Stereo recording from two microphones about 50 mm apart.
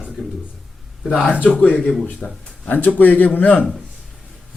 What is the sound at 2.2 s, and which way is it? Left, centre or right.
Speech, centre.